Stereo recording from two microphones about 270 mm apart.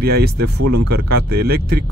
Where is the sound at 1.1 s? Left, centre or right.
Right.